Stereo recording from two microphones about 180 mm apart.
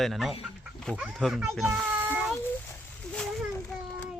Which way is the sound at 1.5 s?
Centre (ahead or behind).